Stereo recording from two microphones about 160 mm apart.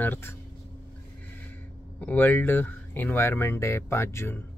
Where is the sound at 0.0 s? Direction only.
15° left (ahead or behind).